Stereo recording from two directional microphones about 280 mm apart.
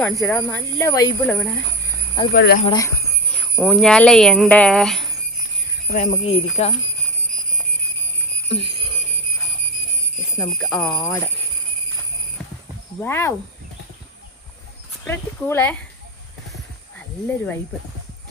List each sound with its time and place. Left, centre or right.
0.0 s speech: centre
2.3 s speech: left
2.6 s speech: centre
3.3 s speech: centre
5.9 s speech: left
10.3 s speech: centre
13.0 s speech: centre
15.0 s speech: centre
17.2 s speech: centre